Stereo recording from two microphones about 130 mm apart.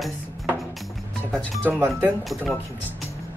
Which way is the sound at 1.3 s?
5° left (ahead or behind).